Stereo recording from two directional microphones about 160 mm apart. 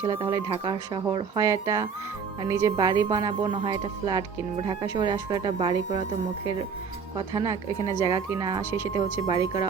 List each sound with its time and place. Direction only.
0.0 s speech: 25° right (ahead or behind)
7.2 s speech: 25° right (ahead or behind)